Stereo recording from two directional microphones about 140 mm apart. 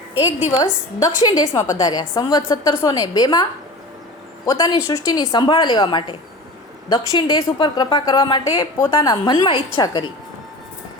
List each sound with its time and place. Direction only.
0.6 s a woman's voice: 25° left (ahead or behind)
4.4 s a woman's voice: 25° left (ahead or behind)